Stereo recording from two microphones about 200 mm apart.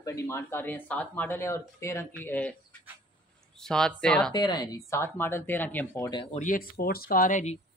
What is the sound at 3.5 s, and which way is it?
Speech, centre (ahead or behind).